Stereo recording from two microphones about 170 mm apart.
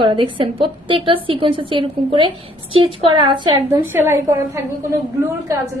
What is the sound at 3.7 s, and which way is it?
A woman's voice, 15° right (ahead or behind).